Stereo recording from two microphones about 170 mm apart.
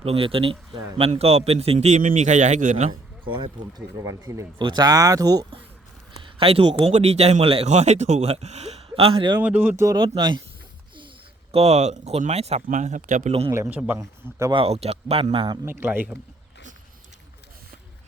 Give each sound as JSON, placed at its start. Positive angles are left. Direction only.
{"t": 0.0, "sound": "speech", "side_deg": -35}
{"t": 3.3, "sound": "speech", "side_deg": -30}
{"t": 4.0, "sound": "speech", "side_deg": -20}
{"t": 6.9, "sound": "speech", "side_deg": -40}
{"t": 9.4, "sound": "speech", "side_deg": -10}
{"t": 11.5, "sound": "speech", "side_deg": -40}
{"t": 13.5, "sound": "speech", "side_deg": -15}
{"t": 14.5, "sound": "speech", "side_deg": -35}
{"t": 15.6, "sound": "speech", "side_deg": -10}